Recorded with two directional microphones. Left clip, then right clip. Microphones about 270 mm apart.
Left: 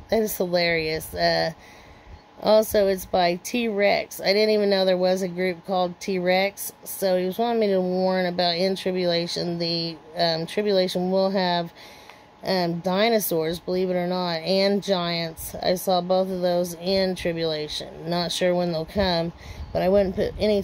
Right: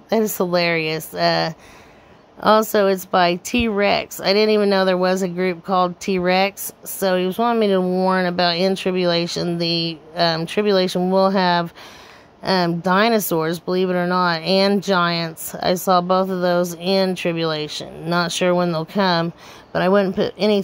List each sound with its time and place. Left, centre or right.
0.1 s speech: centre